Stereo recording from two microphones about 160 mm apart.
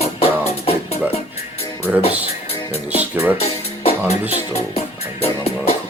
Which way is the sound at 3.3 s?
40° left (ahead or behind).